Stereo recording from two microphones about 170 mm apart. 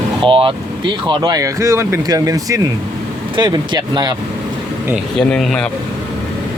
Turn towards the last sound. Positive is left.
turn(degrees=5)  # may be behind; listen again after turning